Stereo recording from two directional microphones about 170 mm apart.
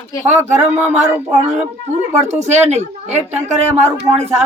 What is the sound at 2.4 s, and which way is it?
Speech, 40° right (ahead or behind).